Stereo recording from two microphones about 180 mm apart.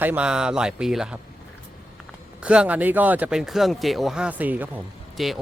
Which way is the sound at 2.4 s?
5° right (ahead or behind).